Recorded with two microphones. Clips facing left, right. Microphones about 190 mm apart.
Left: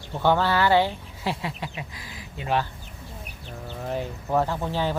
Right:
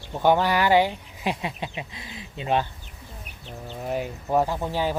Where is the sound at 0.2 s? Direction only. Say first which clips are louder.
Right 1 dB; 15° right (ahead or behind).